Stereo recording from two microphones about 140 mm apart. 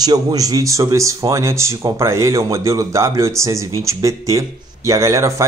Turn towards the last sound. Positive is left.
turn(degrees=-20)  # may be behind; listen again after turning